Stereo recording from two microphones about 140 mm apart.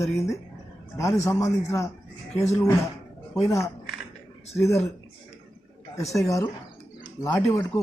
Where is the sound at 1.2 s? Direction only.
20° left (ahead or behind).